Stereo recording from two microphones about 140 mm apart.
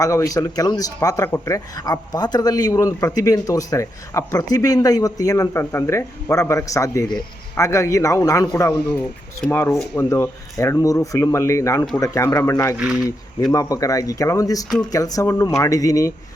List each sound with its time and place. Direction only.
0.0 s speech: 25° left (ahead or behind)
12.7 s speech: 10° right (ahead or behind)
13.1 s speech: 25° left (ahead or behind)